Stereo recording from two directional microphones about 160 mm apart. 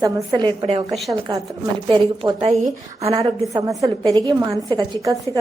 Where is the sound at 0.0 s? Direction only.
30° right (ahead or behind).